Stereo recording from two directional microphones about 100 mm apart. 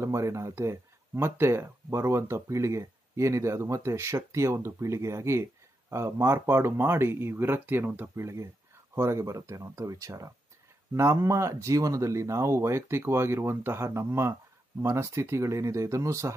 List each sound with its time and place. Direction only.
0.0 s speech: 30° right (ahead or behind)